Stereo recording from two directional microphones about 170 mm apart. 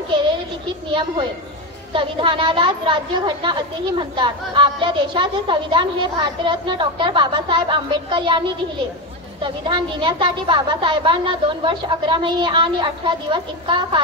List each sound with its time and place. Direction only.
2.0 s a woman's voice: 30° right (ahead or behind)